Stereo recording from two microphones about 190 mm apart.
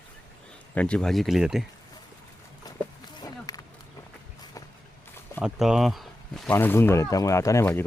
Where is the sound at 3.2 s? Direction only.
20° left (ahead or behind).